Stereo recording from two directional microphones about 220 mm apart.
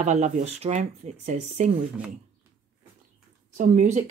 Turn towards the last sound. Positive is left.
turn(degrees=-35)  # may be behind; listen again after turning